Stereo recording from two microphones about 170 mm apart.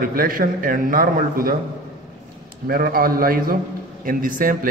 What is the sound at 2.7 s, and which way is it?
A man's voice, 60° right (ahead or behind).